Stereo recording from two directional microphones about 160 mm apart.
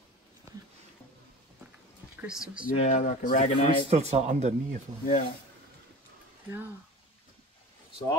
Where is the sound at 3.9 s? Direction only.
45° right (ahead or behind).